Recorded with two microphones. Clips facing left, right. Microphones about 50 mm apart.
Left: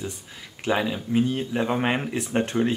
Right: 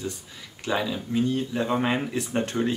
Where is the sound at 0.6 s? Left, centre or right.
Left.